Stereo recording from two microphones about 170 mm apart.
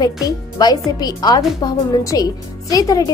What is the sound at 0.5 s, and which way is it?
Speech, 25° left (ahead or behind).